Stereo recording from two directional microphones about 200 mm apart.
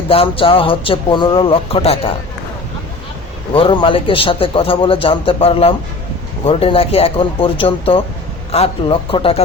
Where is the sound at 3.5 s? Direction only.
25° left (ahead or behind).